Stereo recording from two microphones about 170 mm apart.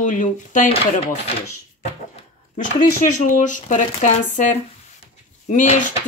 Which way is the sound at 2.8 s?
50° left (ahead or behind).